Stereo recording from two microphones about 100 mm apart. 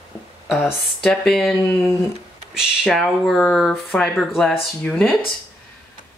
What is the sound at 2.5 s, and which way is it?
Speech, 5° right (ahead or behind).